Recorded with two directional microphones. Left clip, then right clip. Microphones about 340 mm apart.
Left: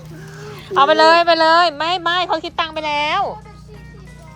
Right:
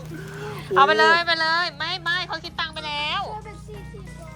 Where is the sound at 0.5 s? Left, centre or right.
Centre.